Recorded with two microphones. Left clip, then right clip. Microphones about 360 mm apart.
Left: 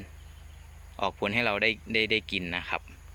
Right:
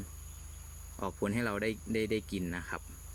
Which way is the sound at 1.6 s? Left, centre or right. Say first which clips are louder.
Left 8 dB; left.